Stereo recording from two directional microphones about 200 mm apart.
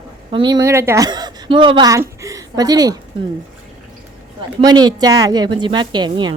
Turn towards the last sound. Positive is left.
turn(degrees=-20)  # may be behind; listen again after turning